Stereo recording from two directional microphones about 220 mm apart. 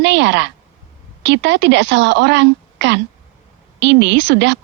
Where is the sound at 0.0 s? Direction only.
55° right (ahead or behind).